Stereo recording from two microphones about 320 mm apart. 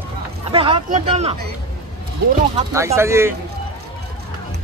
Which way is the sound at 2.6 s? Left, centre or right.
Centre.